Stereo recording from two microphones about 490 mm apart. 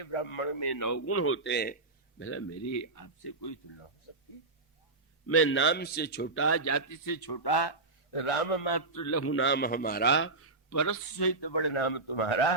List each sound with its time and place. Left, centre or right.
0.0 s a man's voice: left
0.6 s a man's voice: left
0.9 s a man's voice: left
5.2 s a man's voice: left
8.1 s a man's voice: left
8.7 s a man's voice: left